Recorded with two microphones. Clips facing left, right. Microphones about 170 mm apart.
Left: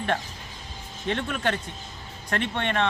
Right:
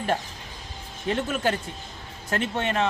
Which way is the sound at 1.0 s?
5° right (ahead or behind).